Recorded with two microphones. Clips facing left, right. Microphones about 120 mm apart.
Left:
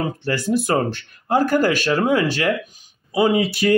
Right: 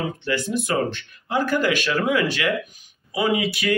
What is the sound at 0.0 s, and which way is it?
Speech, 40° left (ahead or behind).